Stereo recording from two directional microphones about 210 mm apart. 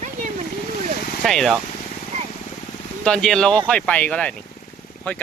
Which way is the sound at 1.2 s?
Centre (ahead or behind).